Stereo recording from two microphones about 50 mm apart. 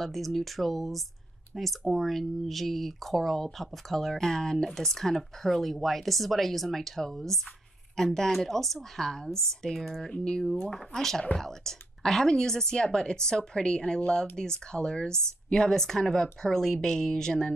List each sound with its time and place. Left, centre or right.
0.0 s a woman's voice: centre